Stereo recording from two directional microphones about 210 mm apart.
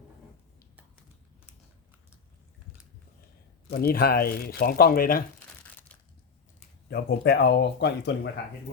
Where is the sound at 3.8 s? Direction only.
45° left (ahead or behind).